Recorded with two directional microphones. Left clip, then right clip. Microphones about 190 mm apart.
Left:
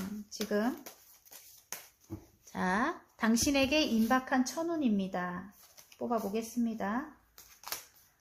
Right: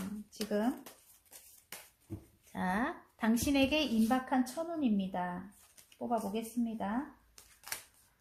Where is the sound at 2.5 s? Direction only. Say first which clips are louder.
Left 3 dB; 30° left (ahead or behind).